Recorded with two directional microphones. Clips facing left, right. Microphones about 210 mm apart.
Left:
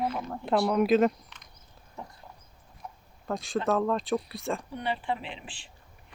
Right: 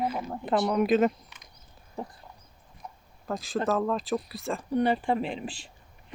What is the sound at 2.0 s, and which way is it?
Dog, 30° right (ahead or behind).